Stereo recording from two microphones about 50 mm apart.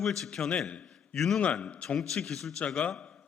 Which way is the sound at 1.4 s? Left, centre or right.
Left.